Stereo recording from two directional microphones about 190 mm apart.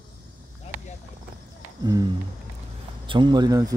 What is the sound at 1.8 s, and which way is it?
Speech, 20° right (ahead or behind).